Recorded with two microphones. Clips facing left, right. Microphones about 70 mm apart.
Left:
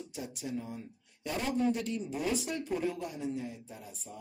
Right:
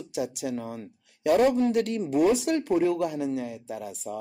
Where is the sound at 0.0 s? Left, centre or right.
Right.